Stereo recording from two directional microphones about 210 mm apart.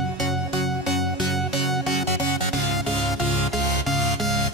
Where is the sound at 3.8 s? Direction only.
Centre (ahead or behind).